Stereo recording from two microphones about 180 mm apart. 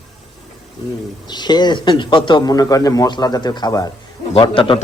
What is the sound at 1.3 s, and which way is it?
Speech, 25° left (ahead or behind).